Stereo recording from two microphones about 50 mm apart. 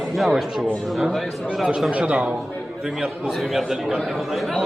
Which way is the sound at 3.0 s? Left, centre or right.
Centre.